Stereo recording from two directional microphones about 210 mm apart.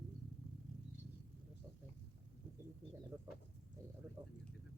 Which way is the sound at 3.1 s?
15° right (ahead or behind).